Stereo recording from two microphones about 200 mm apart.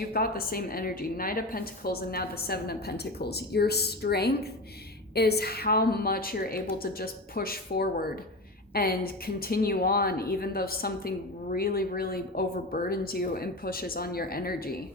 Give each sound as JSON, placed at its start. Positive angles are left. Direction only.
{"t": 0.0, "sound": "a woman's voice", "side_deg": 50}